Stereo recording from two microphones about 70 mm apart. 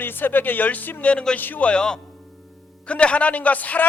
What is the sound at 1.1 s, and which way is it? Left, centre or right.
Speech, centre.